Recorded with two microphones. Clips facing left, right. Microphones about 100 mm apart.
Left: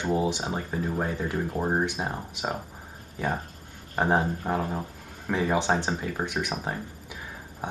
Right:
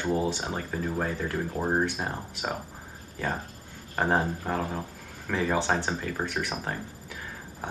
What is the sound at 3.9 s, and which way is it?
Speech, 15° left (ahead or behind).